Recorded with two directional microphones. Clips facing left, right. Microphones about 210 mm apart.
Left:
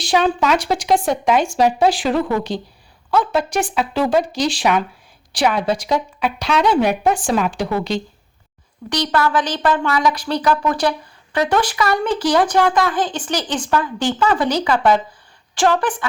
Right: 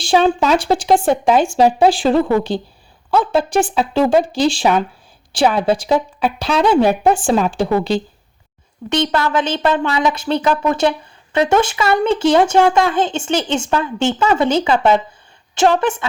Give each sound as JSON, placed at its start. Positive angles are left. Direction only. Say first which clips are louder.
{"t": 0.0, "sound": "speech", "louder": "right 3 dB", "side_deg": -30}